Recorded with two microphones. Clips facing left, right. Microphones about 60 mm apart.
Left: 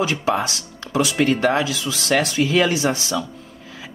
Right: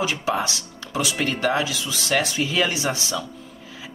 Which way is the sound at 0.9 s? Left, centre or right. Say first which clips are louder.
Left 6 dB; left.